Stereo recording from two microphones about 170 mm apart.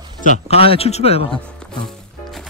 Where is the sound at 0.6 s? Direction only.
35° left (ahead or behind).